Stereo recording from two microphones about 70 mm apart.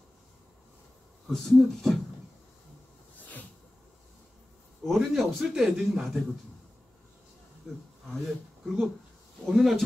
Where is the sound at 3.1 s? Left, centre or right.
Left.